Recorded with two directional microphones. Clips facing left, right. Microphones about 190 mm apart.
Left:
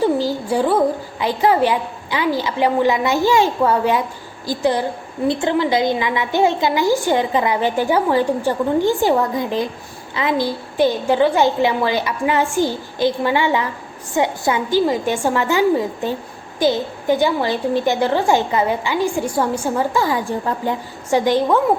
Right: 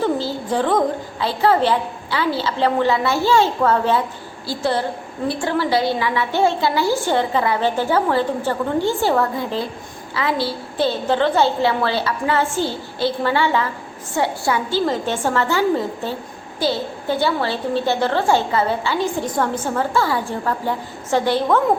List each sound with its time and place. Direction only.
0.0 s a woman's voice: 15° left (ahead or behind)